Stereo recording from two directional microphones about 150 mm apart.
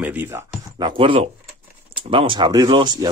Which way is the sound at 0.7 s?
35° right (ahead or behind).